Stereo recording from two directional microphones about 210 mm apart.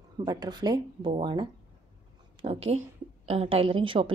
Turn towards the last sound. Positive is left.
turn(degrees=-25)  # may be behind; listen again after turning